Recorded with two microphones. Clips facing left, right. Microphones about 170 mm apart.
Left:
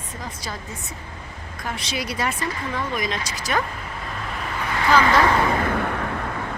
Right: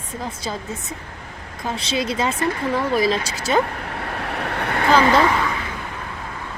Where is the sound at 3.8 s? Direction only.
65° right (ahead or behind).